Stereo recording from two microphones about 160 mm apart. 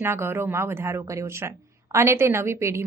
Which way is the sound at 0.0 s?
15° right (ahead or behind).